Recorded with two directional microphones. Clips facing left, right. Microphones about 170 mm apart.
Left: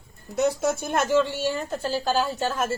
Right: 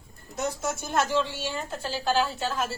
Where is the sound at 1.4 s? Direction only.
40° left (ahead or behind).